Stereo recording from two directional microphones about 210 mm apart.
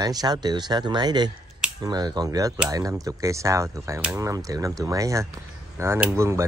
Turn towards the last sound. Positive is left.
turn(degrees=-15)  # may be behind; listen again after turning